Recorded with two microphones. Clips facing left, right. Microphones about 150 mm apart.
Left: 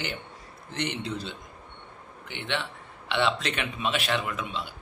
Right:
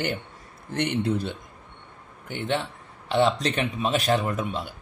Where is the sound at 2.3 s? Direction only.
40° right (ahead or behind).